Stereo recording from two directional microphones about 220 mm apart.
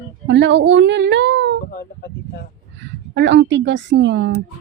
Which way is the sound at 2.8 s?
55° right (ahead or behind).